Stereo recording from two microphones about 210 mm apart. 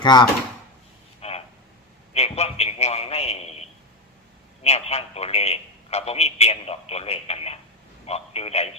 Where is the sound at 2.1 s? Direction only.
30° left (ahead or behind).